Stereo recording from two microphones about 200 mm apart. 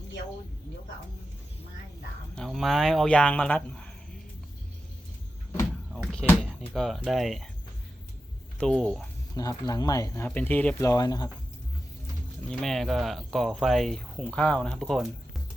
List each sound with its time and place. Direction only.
2.3 s speech: centre (ahead or behind)
5.9 s speech: centre (ahead or behind)
8.5 s speech: 5° left (ahead or behind)
9.3 s speech: 20° left (ahead or behind)
12.5 s speech: centre (ahead or behind)